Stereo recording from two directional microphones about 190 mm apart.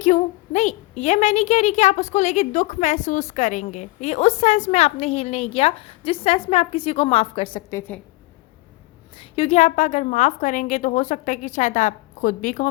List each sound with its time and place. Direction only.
0.0 s a woman's voice: 35° left (ahead or behind)
7.8 s a woman's voice: 10° left (ahead or behind)
9.3 s a woman's voice: 35° left (ahead or behind)